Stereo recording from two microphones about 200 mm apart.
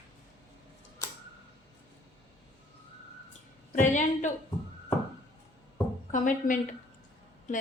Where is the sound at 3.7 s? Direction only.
40° left (ahead or behind).